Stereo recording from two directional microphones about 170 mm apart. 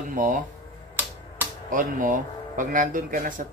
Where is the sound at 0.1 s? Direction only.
50° right (ahead or behind).